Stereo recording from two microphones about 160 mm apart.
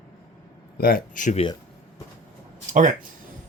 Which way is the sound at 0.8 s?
70° left (ahead or behind).